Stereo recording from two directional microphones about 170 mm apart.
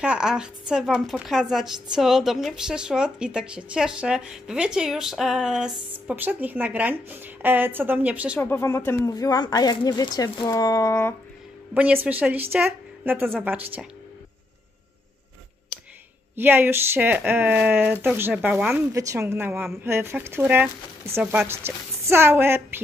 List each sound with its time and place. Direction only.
0.0 s speech: 5° right (ahead or behind)
8.4 s speech: 15° left (ahead or behind)
11.7 s speech: 10° right (ahead or behind)
16.3 s speech: 10° right (ahead or behind)